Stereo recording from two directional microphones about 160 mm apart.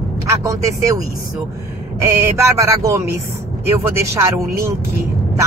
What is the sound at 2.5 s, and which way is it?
Speech, 20° right (ahead or behind).